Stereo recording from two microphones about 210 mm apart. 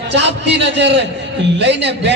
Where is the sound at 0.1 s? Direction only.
55° right (ahead or behind).